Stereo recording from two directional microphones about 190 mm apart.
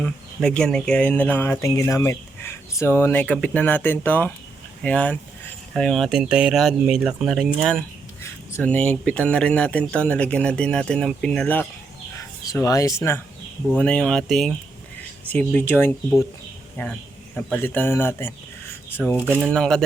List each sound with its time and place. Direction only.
0.0 s speech: 5° left (ahead or behind)
13.7 s speech: 5° left (ahead or behind)
19.1 s speech: 10° right (ahead or behind)
19.4 s speech: 5° left (ahead or behind)